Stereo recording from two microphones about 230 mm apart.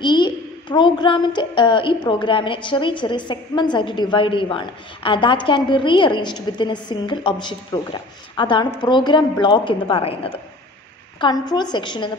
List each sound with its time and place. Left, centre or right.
0.0 s a child's voice: centre